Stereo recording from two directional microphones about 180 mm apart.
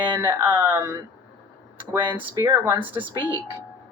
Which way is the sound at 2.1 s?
15° right (ahead or behind).